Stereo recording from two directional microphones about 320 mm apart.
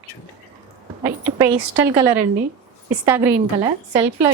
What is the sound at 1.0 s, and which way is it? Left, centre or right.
A woman's voice, centre.